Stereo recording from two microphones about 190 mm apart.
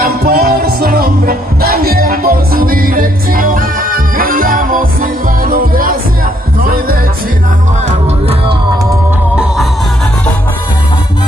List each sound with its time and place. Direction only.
0.0 s music: 50° right (ahead or behind)